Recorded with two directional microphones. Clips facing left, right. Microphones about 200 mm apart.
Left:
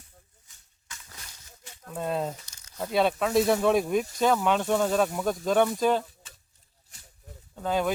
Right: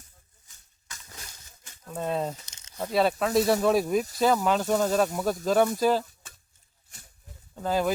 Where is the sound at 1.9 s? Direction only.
Centre (ahead or behind).